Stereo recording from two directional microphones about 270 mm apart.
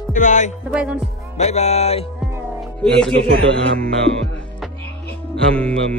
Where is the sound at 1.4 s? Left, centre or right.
Left.